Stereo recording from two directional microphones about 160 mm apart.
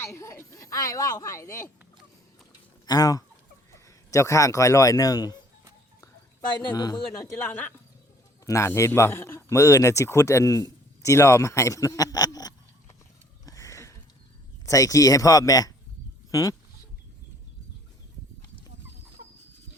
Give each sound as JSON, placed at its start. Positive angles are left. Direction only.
{"t": 0.2, "sound": "speech", "side_deg": 20}
{"t": 2.8, "sound": "a man's voice", "side_deg": 25}
{"t": 6.7, "sound": "speech", "side_deg": 25}
{"t": 13.4, "sound": "a sound", "side_deg": 20}
{"t": 14.7, "sound": "speech", "side_deg": 20}